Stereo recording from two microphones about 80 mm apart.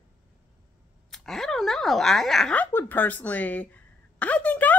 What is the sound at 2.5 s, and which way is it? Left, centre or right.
Speech, left.